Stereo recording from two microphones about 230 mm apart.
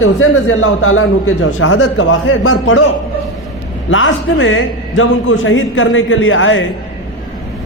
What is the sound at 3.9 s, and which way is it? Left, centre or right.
Speech, left.